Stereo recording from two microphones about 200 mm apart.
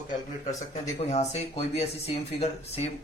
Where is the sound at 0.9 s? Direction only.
30° left (ahead or behind).